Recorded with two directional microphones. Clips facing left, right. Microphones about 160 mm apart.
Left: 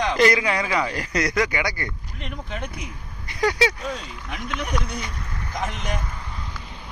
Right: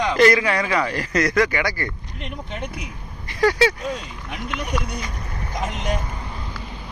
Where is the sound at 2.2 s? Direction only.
Centre (ahead or behind).